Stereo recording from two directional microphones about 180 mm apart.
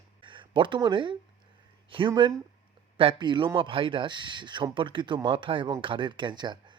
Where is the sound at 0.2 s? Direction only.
25° right (ahead or behind).